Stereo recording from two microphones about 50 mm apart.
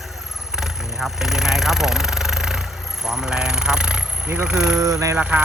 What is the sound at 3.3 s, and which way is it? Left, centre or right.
Speech, centre.